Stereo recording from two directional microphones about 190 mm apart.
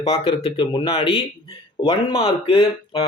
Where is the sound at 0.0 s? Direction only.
30° left (ahead or behind).